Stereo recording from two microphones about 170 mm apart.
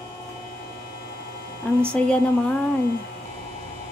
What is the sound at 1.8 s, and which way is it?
Speech, 5° left (ahead or behind).